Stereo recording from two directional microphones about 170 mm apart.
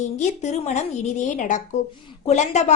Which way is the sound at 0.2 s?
40° left (ahead or behind).